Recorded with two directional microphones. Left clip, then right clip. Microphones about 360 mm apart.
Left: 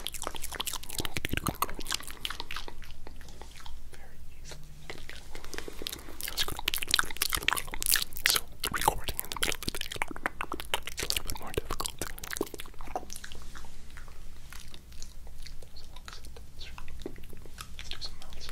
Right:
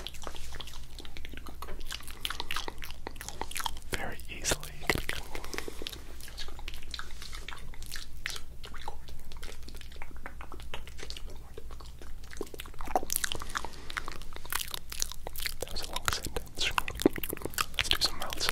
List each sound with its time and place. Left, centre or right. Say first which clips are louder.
0.0 s chewing: left 5 dB; left
2.2 s biting: right 2 dB; centre
3.3 s whispering: right 16 dB; right
5.0 s biting: right 9 dB; right
6.2 s a sound: left 14 dB; left
12.3 s a sound: left 6 dB; left
12.8 s biting: right 9 dB; centre
15.0 s biting: right 14 dB; right